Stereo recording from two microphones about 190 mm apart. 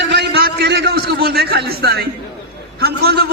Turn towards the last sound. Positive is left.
turn(degrees=-55)  # may be behind; listen again after turning